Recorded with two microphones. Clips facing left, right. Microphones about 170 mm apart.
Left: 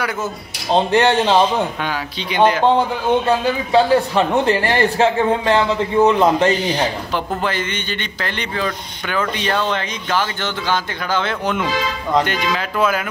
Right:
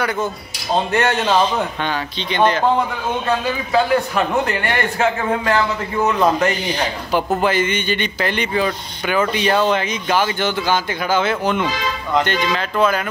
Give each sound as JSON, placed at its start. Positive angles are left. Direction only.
{"t": 0.7, "sound": "a man's voice", "side_deg": 25}
{"t": 1.9, "sound": "speech", "side_deg": 10}
{"t": 3.3, "sound": "a man's voice", "side_deg": 30}
{"t": 7.4, "sound": "speech", "side_deg": -10}